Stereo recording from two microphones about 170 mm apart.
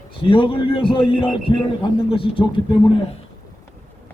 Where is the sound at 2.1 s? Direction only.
30° left (ahead or behind).